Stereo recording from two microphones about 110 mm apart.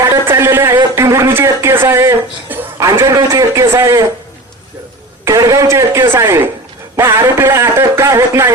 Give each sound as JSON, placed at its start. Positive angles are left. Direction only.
{"t": 0.0, "sound": "a sound", "side_deg": -25}
{"t": 3.0, "sound": "a man's voice", "side_deg": -25}
{"t": 5.4, "sound": "a man's voice", "side_deg": -30}